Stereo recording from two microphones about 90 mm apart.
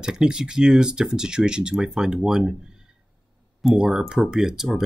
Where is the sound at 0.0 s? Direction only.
10° right (ahead or behind).